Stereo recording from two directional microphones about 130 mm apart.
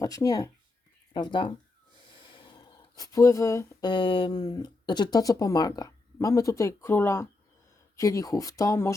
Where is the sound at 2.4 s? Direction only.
35° left (ahead or behind).